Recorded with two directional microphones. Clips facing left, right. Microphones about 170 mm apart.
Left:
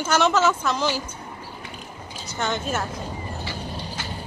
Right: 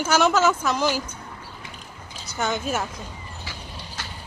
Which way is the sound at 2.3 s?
5° right (ahead or behind).